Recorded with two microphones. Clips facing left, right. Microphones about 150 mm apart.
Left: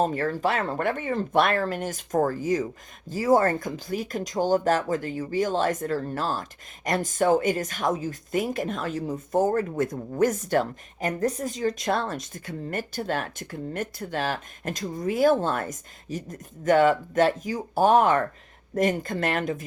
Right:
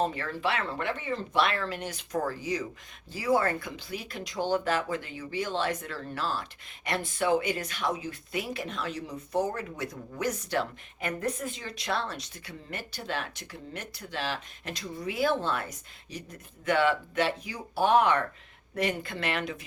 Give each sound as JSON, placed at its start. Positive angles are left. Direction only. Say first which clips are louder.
{"t": 0.0, "sound": "speech", "louder": "left 5 dB", "side_deg": 45}